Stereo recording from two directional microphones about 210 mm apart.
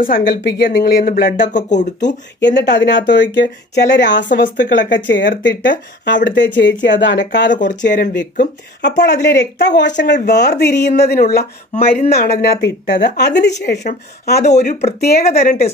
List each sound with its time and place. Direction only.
0.0 s speech: 40° left (ahead or behind)
2.4 s speech: 55° left (ahead or behind)
4.3 s speech: 35° left (ahead or behind)
4.9 s speech: 60° left (ahead or behind)
11.7 s speech: 30° left (ahead or behind)
12.1 s speech: 50° left (ahead or behind)
14.4 s speech: 35° left (ahead or behind)
15.0 s speech: 45° left (ahead or behind)